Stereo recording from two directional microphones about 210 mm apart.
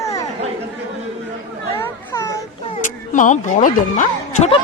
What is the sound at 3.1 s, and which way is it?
Speech, 35° left (ahead or behind).